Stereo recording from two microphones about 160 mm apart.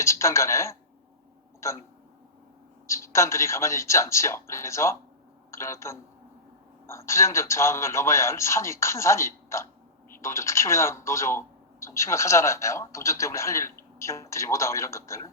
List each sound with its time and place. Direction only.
0.0 s speech: 20° left (ahead or behind)
2.8 s a man's voice: 20° left (ahead or behind)